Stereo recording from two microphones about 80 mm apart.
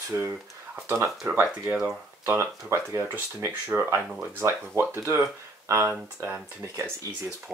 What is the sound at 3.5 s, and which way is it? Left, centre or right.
Speech, right.